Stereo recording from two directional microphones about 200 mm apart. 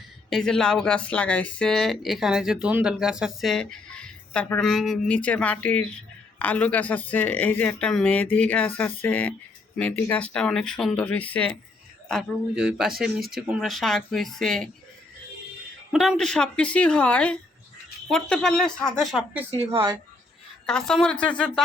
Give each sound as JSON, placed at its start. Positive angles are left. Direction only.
{"t": 0.3, "sound": "speech", "side_deg": 0}
{"t": 15.9, "sound": "speech", "side_deg": 0}
{"t": 19.5, "sound": "a woman's voice", "side_deg": -15}
{"t": 20.7, "sound": "speech", "side_deg": 5}